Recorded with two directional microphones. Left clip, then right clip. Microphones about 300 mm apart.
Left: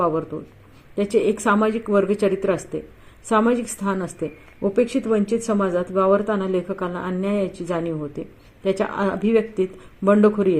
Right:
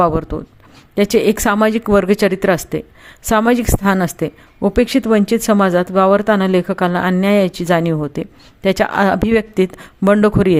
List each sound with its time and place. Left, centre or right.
0.0 s a woman's voice: right